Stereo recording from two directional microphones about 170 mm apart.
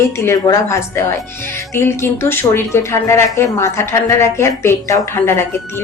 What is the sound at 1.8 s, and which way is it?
Speech, 15° left (ahead or behind).